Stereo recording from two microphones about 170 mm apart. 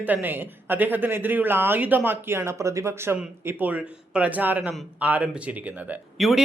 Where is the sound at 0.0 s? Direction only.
10° right (ahead or behind).